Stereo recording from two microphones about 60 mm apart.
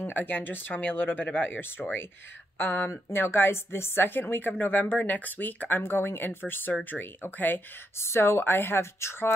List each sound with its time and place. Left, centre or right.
0.0 s speech: left
2.9 s speech: left
8.0 s speech: left